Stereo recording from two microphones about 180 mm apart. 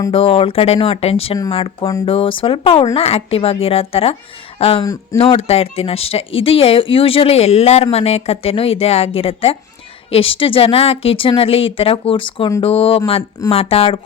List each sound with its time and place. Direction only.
0.1 s speech: 30° left (ahead or behind)